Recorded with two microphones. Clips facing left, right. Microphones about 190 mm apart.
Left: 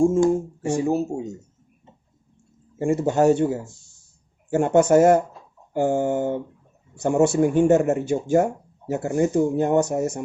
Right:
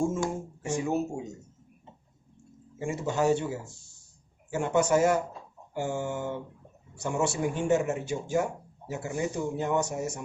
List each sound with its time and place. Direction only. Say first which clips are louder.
0.6 s speech: left 4 dB; 35° left (ahead or behind)
2.7 s speech: left 9 dB; 50° left (ahead or behind)